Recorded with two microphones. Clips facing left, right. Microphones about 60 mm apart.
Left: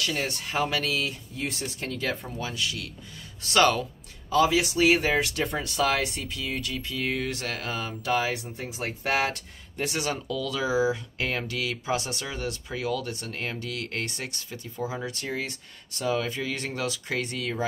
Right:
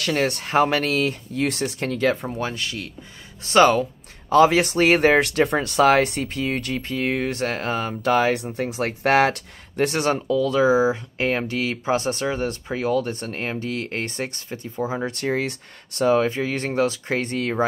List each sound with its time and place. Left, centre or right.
0.0 s speech: right
1.4 s speech: right
2.3 s speech: right
4.3 s speech: right
15.1 s speech: right
16.1 s speech: right